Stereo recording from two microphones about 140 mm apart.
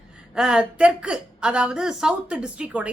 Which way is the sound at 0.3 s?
5° right (ahead or behind).